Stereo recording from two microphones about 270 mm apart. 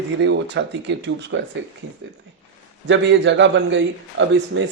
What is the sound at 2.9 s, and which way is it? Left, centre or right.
Speech, right.